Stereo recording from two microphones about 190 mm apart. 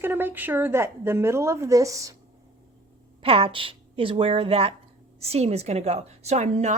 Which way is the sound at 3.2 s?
30° right (ahead or behind).